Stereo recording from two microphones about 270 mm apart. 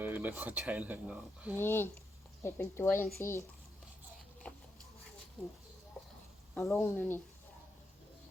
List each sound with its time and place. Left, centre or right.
0.0 s speech: centre
1.5 s speech: centre
6.5 s speech: centre